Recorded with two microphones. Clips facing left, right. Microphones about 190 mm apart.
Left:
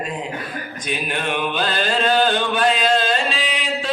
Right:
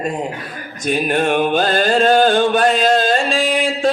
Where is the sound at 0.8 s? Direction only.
45° right (ahead or behind).